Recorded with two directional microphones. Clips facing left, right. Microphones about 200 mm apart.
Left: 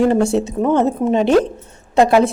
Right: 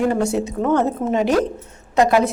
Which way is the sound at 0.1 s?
30° left (ahead or behind).